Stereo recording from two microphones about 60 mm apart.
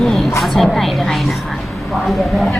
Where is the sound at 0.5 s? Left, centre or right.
Centre.